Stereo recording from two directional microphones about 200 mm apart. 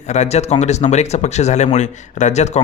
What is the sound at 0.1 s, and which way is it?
Speech, 35° left (ahead or behind).